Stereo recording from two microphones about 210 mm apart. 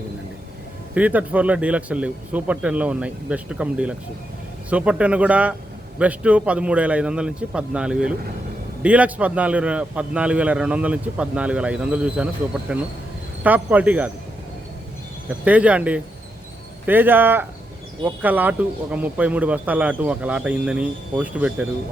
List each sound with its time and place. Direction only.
0.9 s a man's voice: 5° right (ahead or behind)
15.3 s speech: 5° right (ahead or behind)